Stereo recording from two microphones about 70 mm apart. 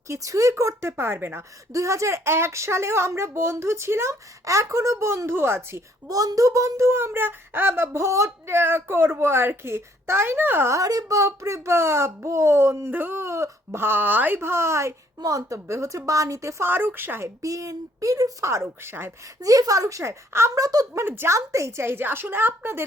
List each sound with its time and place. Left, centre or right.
0.1 s speech: right
1.7 s speech: right
6.1 s speech: right
10.7 s speech: right
15.2 s speech: right
16.6 s speech: right
17.4 s speech: right
19.4 s speech: right
20.6 s speech: right
20.9 s speech: right
21.3 s speech: right